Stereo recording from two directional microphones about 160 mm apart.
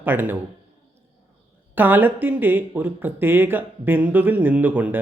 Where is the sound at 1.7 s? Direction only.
10° right (ahead or behind).